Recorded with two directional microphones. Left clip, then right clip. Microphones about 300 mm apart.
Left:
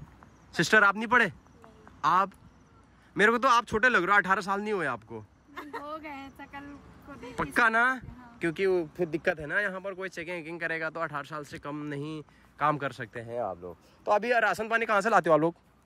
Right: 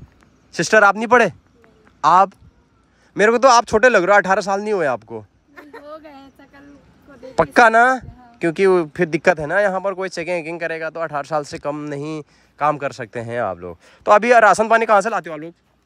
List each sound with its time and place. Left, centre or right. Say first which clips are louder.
0.6 s speech: right 9 dB; centre
5.9 s a sound: right 3 dB; left
7.3 s speech: right 13 dB; centre
13.2 s speech: right 11 dB; right
13.8 s speech: right 13 dB; centre
15.2 s speech: left 7 dB; centre